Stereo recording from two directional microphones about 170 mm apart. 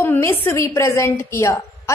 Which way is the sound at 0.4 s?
15° left (ahead or behind).